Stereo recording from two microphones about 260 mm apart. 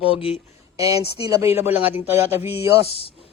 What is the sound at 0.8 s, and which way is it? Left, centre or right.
Speech, centre.